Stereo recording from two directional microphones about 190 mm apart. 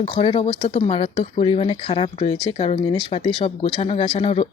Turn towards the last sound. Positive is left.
turn(degrees=30)  # may be behind; listen again after turning